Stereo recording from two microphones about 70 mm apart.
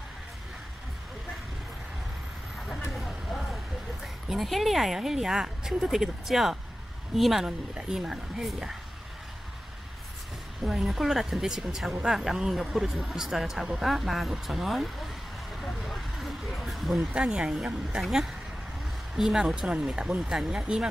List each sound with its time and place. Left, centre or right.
2.9 s vehicle: centre
4.0 s a woman's voice: centre
10.6 s a woman's voice: centre
15.6 s vehicle: centre
17.1 s speech: centre
19.1 s speech: centre